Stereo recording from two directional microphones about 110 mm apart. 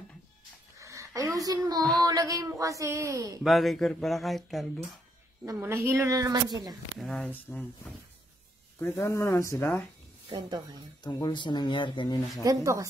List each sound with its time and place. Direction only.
0.7 s speech: 30° right (ahead or behind)
1.8 s speech: 5° left (ahead or behind)
2.0 s a man's voice: 35° right (ahead or behind)
3.4 s speech: centre (ahead or behind)
5.4 s a woman's voice: 25° right (ahead or behind)
7.0 s speech: 5° left (ahead or behind)
7.5 s speech: 25° left (ahead or behind)
8.7 s speech: 20° left (ahead or behind)
10.3 s a man's voice: 40° right (ahead or behind)
11.1 s speech: 40° left (ahead or behind)
12.4 s a woman's voice: 30° right (ahead or behind)